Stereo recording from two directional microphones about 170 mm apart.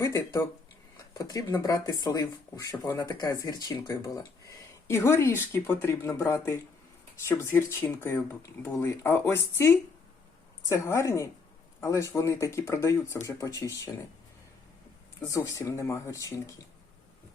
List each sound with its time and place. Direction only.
0.0 s speech: 20° left (ahead or behind)
15.3 s speech: 20° left (ahead or behind)